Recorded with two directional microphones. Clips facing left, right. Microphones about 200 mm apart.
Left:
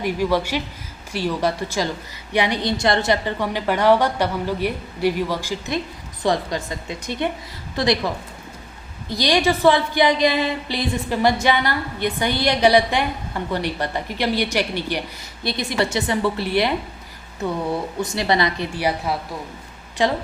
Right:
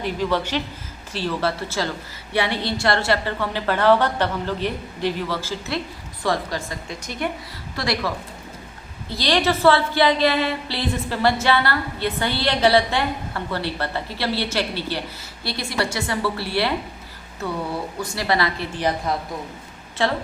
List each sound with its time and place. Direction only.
0.0 s a woman's voice: 10° left (ahead or behind)
18.0 s a woman's voice: 20° left (ahead or behind)